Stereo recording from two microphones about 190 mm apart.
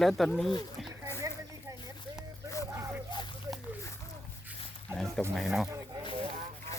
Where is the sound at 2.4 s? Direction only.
15° right (ahead or behind).